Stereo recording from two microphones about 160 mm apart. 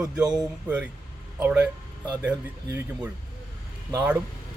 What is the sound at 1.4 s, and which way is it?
Speech, 10° right (ahead or behind).